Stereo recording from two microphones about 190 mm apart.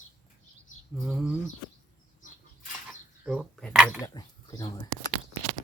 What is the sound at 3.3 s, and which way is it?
Speech, centre (ahead or behind).